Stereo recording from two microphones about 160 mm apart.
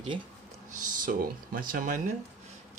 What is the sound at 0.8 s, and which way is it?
Speech, 60° right (ahead or behind).